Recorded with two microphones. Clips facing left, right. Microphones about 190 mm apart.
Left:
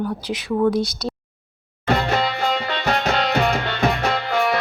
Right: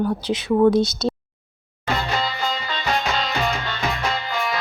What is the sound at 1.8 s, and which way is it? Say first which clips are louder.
Music: left 4 dB; 60° left (ahead or behind).